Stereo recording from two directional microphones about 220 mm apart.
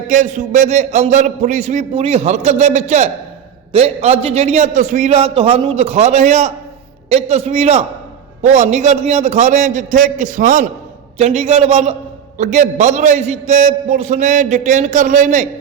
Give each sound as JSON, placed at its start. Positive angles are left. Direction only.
{"t": 0.1, "sound": "a man's voice", "side_deg": -35}